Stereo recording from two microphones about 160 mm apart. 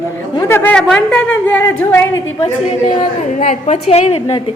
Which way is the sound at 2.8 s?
50° left (ahead or behind).